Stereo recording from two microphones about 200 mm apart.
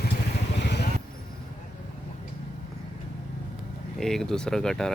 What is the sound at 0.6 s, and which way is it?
Vehicle, 60° left (ahead or behind).